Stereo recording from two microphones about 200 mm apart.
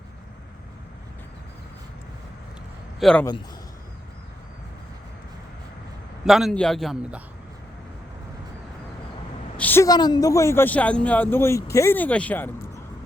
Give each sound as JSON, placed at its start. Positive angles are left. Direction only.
{"t": 3.0, "sound": "a man's voice", "side_deg": 5}
{"t": 6.2, "sound": "a man's voice", "side_deg": 0}
{"t": 9.6, "sound": "speech", "side_deg": 10}